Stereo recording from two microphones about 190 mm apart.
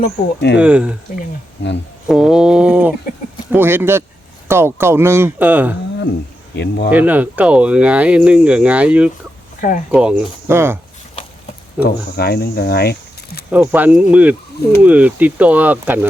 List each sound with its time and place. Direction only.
0.3 s speech: 60° left (ahead or behind)
0.6 s speech: 5° right (ahead or behind)
2.0 s speech: 5° right (ahead or behind)
6.5 s speech: 65° left (ahead or behind)
6.9 s speech: 10° right (ahead or behind)
9.6 s speech: 45° left (ahead or behind)
9.9 s speech: 5° right (ahead or behind)
11.8 s speech: 55° left (ahead or behind)
13.5 s speech: 10° right (ahead or behind)